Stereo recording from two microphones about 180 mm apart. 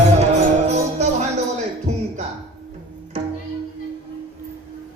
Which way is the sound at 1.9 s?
40° right (ahead or behind).